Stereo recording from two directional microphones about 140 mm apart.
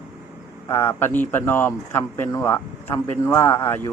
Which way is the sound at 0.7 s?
20° left (ahead or behind).